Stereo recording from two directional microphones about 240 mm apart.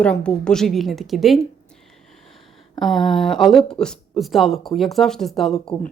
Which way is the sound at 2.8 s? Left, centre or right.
Centre.